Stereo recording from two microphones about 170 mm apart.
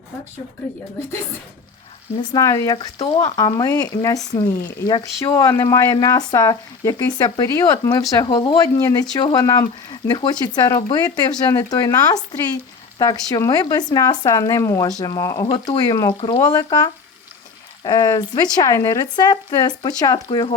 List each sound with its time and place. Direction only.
2.3 s speech: 20° left (ahead or behind)